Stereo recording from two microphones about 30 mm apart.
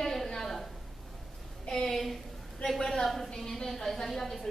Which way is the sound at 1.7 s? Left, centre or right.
Centre.